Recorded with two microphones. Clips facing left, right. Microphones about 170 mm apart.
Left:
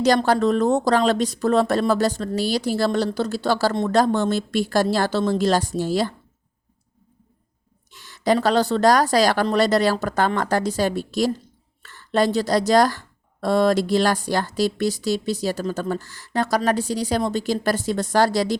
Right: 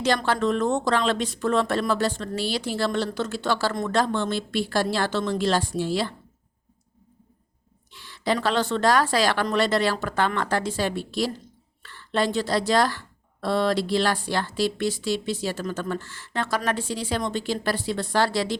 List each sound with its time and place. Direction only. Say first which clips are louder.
0.3 s a woman's voice: left 5 dB; 35° left (ahead or behind)
7.9 s a woman's voice: left 5 dB; 45° left (ahead or behind)